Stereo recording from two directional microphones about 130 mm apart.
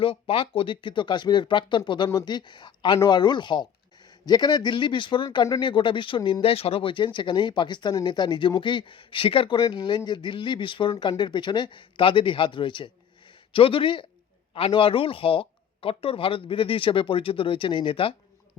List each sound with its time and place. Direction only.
0.0 s speech: 45° left (ahead or behind)